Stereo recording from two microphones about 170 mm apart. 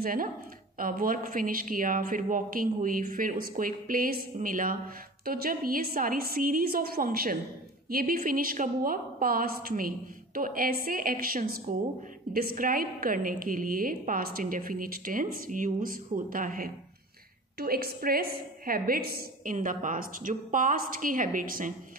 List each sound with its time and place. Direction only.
0.0 s a woman's voice: 55° right (ahead or behind)